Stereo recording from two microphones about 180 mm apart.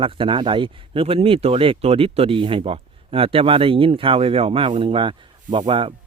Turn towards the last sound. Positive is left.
turn(degrees=-30)  # may be behind; listen again after turning